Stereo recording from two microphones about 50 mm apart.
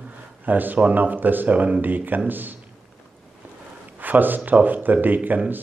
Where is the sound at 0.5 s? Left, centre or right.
Right.